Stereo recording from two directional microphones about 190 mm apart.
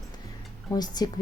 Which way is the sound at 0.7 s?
20° left (ahead or behind).